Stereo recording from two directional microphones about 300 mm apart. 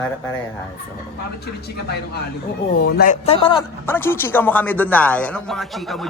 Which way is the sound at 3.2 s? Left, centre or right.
Centre.